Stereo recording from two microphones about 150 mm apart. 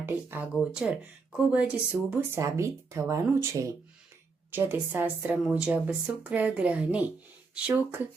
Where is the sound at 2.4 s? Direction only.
20° right (ahead or behind).